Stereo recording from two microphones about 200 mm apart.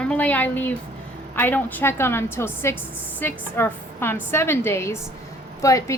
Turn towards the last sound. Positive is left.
turn(degrees=15)  # may be behind; listen again after turning